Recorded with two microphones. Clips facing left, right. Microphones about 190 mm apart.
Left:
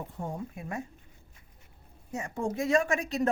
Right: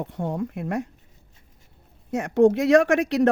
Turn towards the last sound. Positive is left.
turn(degrees=-80)